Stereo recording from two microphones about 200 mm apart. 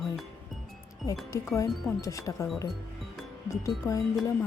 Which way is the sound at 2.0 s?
15° left (ahead or behind).